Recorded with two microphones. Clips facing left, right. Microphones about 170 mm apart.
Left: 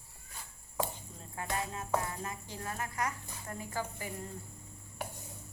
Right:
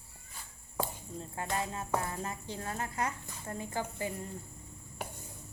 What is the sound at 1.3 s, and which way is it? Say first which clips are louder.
A woman's voice: right 1 dB; 30° right (ahead or behind).